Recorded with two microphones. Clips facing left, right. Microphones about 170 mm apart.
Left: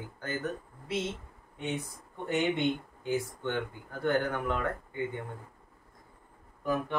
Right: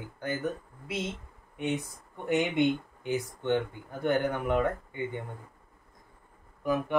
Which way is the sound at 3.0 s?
20° right (ahead or behind).